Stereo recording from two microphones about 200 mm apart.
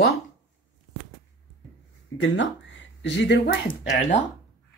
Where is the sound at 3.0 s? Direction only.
60° left (ahead or behind).